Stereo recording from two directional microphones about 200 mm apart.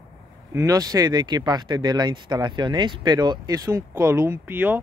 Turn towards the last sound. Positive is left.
turn(degrees=-10)  # may be behind; listen again after turning